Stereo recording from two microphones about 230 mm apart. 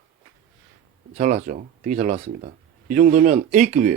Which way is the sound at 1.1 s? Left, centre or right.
Right.